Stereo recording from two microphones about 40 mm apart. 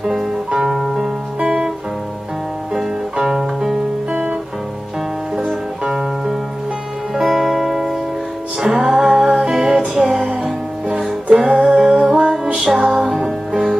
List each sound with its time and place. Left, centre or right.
0.0 s music: centre
0.5 s music: centre
2.7 s music: centre
4.1 s music: right
7.2 s music: centre